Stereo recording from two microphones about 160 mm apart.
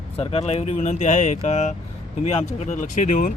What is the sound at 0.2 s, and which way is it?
Speech, 35° left (ahead or behind).